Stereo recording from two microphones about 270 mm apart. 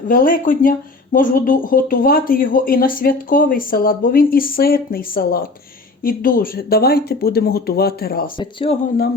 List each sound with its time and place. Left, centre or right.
0.1 s speech: left
8.4 s speech: centre